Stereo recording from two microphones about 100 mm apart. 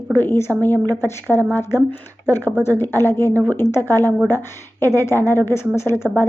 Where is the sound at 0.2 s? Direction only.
25° left (ahead or behind).